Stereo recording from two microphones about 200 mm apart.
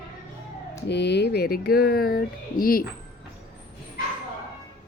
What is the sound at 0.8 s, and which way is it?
Speech, 60° left (ahead or behind).